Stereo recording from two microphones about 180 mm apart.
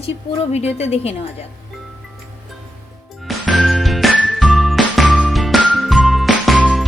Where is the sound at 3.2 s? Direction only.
Centre (ahead or behind).